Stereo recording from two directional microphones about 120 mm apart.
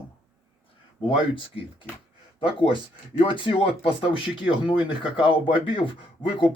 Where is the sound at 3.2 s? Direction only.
45° left (ahead or behind).